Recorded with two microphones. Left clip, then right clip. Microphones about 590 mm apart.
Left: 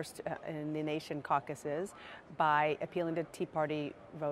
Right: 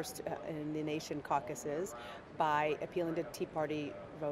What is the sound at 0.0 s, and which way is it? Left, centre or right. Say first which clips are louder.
Speech: even; left.